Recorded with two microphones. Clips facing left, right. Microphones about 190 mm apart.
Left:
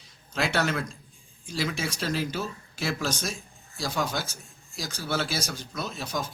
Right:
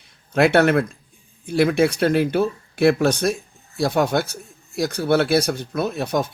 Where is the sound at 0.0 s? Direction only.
60° right (ahead or behind).